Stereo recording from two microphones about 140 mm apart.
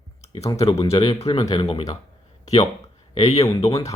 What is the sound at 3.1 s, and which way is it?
Speech, 50° left (ahead or behind).